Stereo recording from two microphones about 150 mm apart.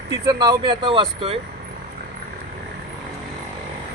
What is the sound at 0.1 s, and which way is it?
Speech, 30° right (ahead or behind).